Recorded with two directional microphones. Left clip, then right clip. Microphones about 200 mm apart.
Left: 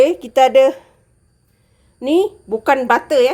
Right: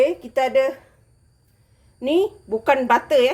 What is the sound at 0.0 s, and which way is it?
Speech, 45° left (ahead or behind).